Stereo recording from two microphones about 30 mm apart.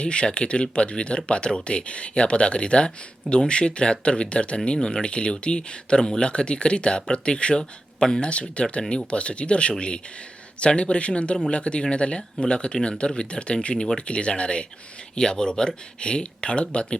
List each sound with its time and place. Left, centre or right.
0.0 s speech: left
8.3 s speech: left
15.1 s speech: left